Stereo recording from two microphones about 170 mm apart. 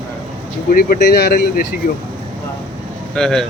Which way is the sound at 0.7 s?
60° left (ahead or behind).